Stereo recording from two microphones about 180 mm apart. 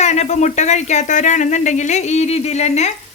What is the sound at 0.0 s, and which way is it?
Speech, 40° left (ahead or behind).